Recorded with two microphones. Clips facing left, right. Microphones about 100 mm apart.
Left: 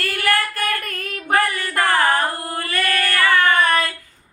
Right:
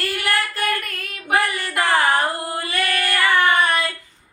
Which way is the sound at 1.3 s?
20° right (ahead or behind).